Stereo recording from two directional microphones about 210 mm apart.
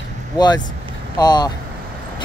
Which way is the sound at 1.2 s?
20° left (ahead or behind).